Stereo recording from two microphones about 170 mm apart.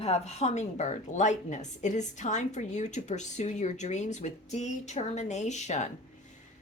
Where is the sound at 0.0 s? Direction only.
40° left (ahead or behind).